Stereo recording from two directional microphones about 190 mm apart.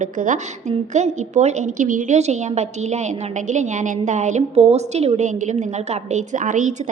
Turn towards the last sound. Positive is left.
turn(degrees=-40)  # may be behind; listen again after turning